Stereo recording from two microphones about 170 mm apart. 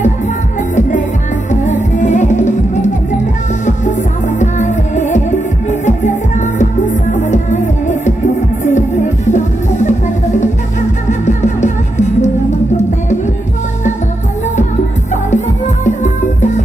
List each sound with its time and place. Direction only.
0.7 s music: 50° left (ahead or behind)
4.4 s music: 45° left (ahead or behind)
8.6 s music: 45° left (ahead or behind)
11.1 s music: 45° left (ahead or behind)
15.3 s music: 45° left (ahead or behind)